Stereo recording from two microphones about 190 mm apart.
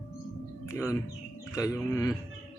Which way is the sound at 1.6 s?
15° left (ahead or behind).